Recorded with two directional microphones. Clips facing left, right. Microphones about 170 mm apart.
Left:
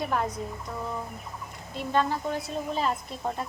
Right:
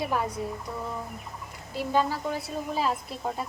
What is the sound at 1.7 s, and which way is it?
A woman's voice, 5° right (ahead or behind).